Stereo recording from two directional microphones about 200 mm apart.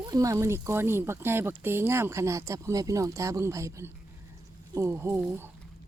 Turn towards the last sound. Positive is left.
turn(degrees=-10)  # may be behind; listen again after turning